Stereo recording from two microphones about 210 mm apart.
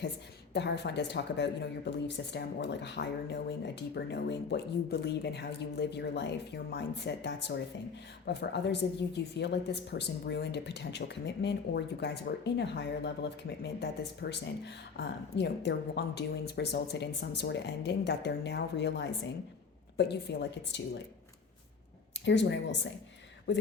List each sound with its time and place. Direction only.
0.5 s a woman's voice: 55° left (ahead or behind)
22.2 s a woman's voice: 60° left (ahead or behind)